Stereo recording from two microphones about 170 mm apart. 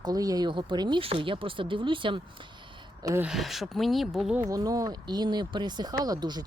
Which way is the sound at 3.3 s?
Centre (ahead or behind).